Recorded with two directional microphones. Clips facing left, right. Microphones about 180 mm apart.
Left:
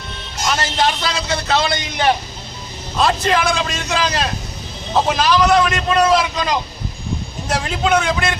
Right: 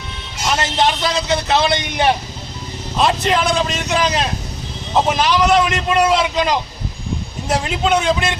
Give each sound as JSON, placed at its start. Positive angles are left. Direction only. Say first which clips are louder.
{"t": 0.5, "sound": "a man's voice", "louder": "right 2 dB", "side_deg": -20}
{"t": 7.5, "sound": "a man's voice", "louder": "even", "side_deg": -20}